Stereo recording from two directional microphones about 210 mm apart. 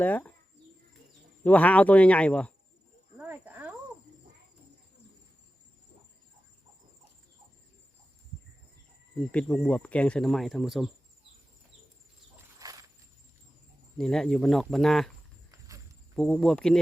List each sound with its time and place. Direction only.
0.0 s speech: 5° left (ahead or behind)
1.5 s speech: 5° left (ahead or behind)
3.2 s cricket: 10° right (ahead or behind)
9.1 s speech: 5° left (ahead or behind)
12.5 s a sound: 15° right (ahead or behind)
14.0 s speech: centre (ahead or behind)
16.1 s speech: centre (ahead or behind)